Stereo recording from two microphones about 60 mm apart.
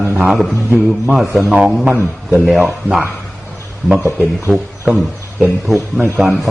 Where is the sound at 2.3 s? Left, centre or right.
Centre.